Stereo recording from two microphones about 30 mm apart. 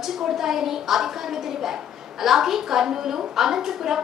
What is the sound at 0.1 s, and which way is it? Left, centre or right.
A woman's voice, centre.